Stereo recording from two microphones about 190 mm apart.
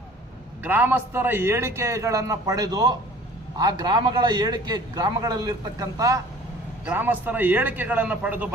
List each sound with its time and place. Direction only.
0.6 s a man's voice: 10° right (ahead or behind)